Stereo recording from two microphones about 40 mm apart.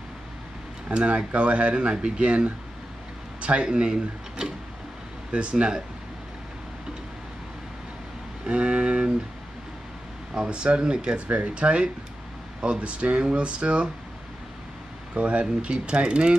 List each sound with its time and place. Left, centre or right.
0.9 s speech: right
8.5 s speech: right
10.3 s speech: right
15.1 s speech: right